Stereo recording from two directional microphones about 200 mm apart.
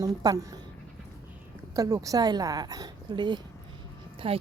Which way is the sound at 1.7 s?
15° right (ahead or behind).